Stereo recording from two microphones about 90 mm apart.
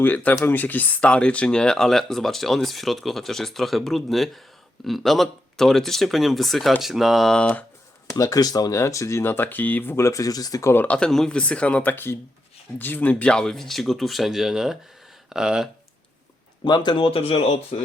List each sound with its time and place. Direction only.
0.0 s speech: 20° left (ahead or behind)
8.1 s speech: 45° left (ahead or behind)
10.8 s speech: 10° left (ahead or behind); by 15.7 s 5° right (ahead or behind)
16.6 s speech: 60° left (ahead or behind); by 17.6 s 90° left